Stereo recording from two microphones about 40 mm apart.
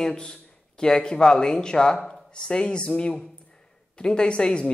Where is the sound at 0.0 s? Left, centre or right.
Centre.